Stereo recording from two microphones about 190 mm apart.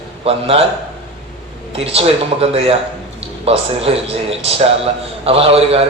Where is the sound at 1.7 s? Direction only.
30° right (ahead or behind).